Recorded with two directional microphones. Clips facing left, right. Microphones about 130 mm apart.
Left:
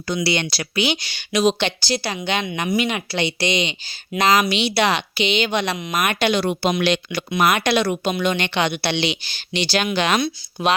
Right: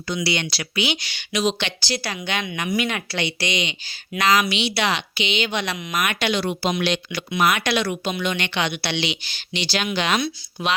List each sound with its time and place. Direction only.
0.1 s speech: 35° left (ahead or behind)
1.5 s speech: 30° left (ahead or behind)
4.4 s speech: 40° left (ahead or behind)
6.1 s speech: 50° left (ahead or behind)
7.2 s speech: 45° left (ahead or behind)